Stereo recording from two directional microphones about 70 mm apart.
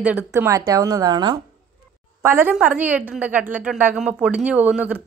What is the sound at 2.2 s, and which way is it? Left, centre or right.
A woman's voice, right.